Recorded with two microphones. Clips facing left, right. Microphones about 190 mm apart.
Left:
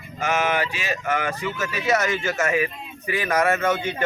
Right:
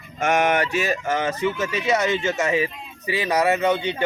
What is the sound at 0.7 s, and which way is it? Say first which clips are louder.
Speech: right 6 dB; 40° right (ahead or behind).